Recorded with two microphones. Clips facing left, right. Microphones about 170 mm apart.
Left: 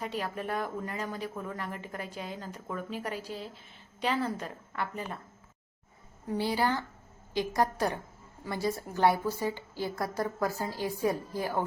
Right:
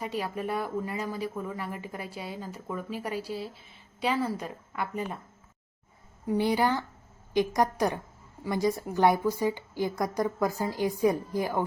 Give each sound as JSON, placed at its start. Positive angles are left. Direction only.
{"t": 0.2, "sound": "speech", "side_deg": -10}
{"t": 6.2, "sound": "speech", "side_deg": -15}